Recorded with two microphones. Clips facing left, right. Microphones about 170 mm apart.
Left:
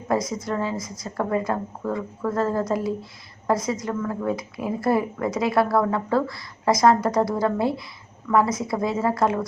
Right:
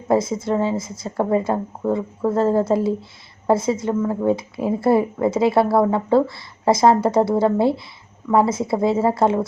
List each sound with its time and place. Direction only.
0.1 s a woman's voice: 25° right (ahead or behind)